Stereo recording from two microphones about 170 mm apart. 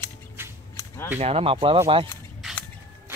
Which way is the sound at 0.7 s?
20° left (ahead or behind).